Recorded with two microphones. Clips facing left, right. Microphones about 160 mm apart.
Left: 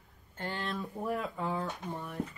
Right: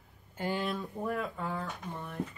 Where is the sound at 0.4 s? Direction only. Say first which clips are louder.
Right 5 dB; 15° right (ahead or behind).